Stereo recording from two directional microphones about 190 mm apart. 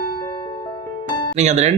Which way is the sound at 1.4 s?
35° right (ahead or behind).